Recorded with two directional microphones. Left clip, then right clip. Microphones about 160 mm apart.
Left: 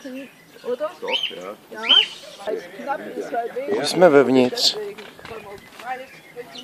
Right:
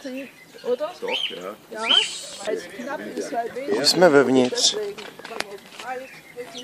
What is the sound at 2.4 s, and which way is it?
Speech, 55° right (ahead or behind).